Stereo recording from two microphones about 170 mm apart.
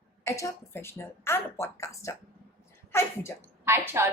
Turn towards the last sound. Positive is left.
turn(degrees=-15)  # may be behind; listen again after turning